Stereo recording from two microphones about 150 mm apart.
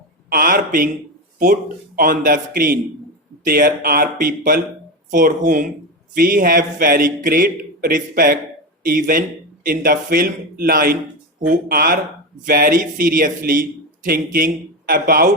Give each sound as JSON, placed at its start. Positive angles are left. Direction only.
{"t": 0.3, "sound": "a man's voice", "side_deg": -70}
{"t": 2.0, "sound": "a man's voice", "side_deg": -65}
{"t": 11.3, "sound": "a man's voice", "side_deg": -60}